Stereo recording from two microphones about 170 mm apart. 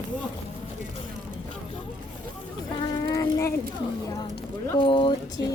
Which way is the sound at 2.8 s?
25° left (ahead or behind).